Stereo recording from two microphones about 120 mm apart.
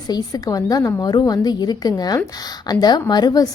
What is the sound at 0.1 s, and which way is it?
A woman's voice, 30° left (ahead or behind).